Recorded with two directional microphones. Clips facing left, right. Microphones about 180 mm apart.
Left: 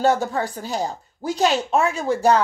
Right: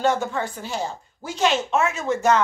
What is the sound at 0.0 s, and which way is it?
Speech, 35° left (ahead or behind).